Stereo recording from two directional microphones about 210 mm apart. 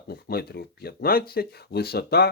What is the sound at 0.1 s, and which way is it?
Speech, 45° left (ahead or behind).